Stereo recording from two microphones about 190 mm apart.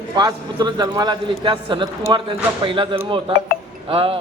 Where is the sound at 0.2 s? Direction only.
20° right (ahead or behind).